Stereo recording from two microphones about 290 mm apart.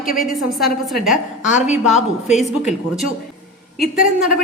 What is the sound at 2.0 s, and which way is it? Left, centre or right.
Speech, left.